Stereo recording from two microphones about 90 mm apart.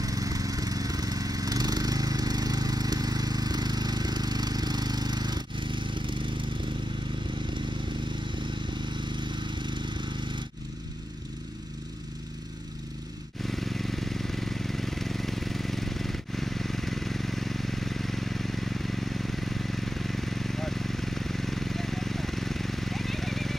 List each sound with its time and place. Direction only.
0.0 s a sound: 40° right (ahead or behind); by 6.3 s 65° right (ahead or behind)
8.8 s vehicle: 60° right (ahead or behind)
13.4 s vehicle: centre (ahead or behind)